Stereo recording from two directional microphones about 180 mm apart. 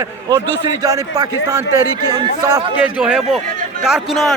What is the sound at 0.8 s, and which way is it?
Speech, 20° right (ahead or behind).